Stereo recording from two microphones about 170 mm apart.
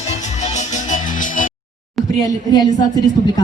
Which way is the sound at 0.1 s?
40° left (ahead or behind).